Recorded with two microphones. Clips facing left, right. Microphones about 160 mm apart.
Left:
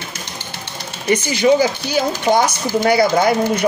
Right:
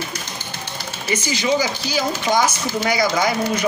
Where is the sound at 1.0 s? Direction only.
55° left (ahead or behind).